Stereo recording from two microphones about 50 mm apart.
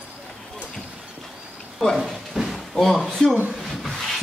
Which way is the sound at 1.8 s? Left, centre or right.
Centre.